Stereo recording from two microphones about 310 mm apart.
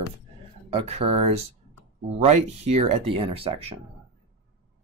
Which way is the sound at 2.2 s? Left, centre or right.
Right.